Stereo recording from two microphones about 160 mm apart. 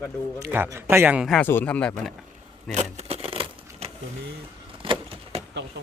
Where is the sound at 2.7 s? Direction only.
45° right (ahead or behind).